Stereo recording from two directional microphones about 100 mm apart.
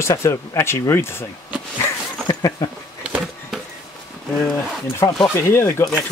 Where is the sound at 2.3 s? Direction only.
40° left (ahead or behind).